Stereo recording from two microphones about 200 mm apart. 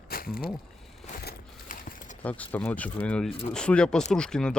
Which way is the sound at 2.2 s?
5° left (ahead or behind).